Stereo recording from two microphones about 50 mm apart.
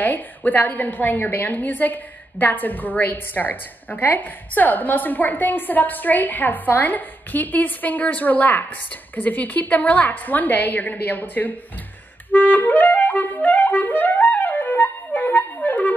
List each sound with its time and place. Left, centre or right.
0.0 s a woman's voice: left
12.3 s clarinet: left